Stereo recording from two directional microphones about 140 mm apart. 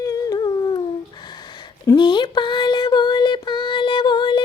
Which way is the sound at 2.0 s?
35° left (ahead or behind).